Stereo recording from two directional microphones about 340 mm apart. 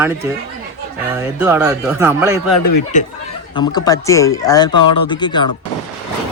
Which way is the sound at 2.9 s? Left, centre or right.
Left.